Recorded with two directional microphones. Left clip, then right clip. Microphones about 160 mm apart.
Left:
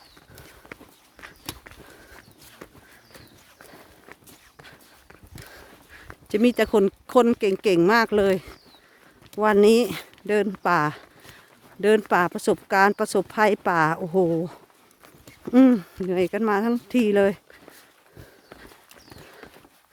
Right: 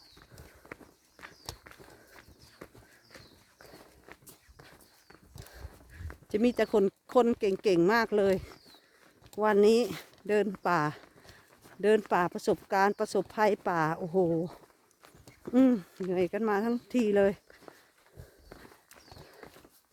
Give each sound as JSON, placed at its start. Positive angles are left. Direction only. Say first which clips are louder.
{"t": 0.7, "sound": "walk", "louder": "left 4 dB", "side_deg": 0}
{"t": 2.6, "sound": "walk", "louder": "left 5 dB", "side_deg": 10}
{"t": 5.5, "sound": "a sound", "louder": "left 6 dB", "side_deg": 30}
{"t": 6.2, "sound": "speech", "louder": "left 7 dB", "side_deg": 35}